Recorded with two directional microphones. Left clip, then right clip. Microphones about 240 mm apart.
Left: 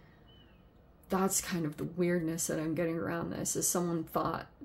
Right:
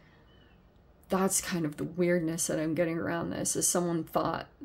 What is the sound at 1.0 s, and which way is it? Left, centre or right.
A woman's voice, centre.